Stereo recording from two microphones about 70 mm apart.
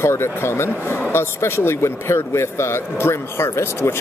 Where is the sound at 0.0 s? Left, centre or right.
Left.